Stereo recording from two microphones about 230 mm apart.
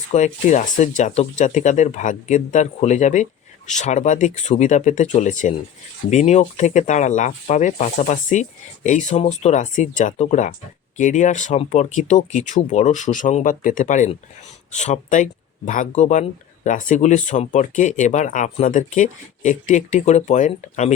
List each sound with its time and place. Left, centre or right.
0.1 s speech: left